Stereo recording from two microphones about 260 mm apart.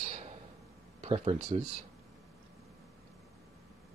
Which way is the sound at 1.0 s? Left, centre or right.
Right.